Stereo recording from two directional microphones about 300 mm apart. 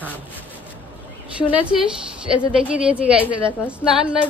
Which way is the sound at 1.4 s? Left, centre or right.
Centre.